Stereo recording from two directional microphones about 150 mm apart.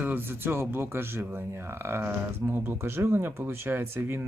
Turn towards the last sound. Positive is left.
turn(degrees=-15)  # may be behind; listen again after turning